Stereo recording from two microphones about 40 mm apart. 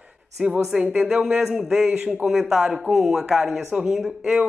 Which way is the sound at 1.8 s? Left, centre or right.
Right.